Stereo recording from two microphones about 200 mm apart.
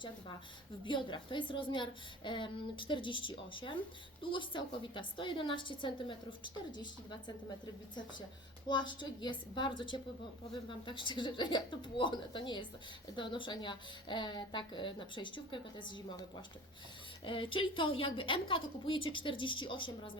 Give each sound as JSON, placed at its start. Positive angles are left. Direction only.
{"t": 0.9, "sound": "a woman's voice", "side_deg": 25}
{"t": 8.6, "sound": "a woman's voice", "side_deg": 20}
{"t": 17.2, "sound": "a woman's voice", "side_deg": 25}